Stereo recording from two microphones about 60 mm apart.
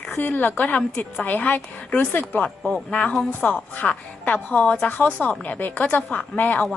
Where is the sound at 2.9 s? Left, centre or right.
Left.